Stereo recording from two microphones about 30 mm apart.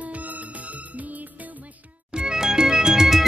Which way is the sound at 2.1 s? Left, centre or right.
Right.